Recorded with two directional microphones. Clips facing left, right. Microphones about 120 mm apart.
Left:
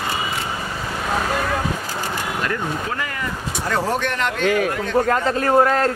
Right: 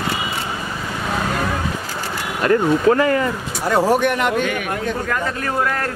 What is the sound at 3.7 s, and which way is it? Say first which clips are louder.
Speech: right 6 dB; 10° right (ahead or behind).